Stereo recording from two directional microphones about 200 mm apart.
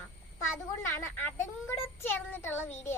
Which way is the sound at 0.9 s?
10° left (ahead or behind).